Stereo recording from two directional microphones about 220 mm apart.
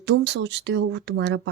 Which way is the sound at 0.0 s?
50° right (ahead or behind).